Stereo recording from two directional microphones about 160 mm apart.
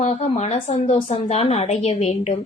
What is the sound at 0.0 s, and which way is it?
A woman's voice, 45° left (ahead or behind).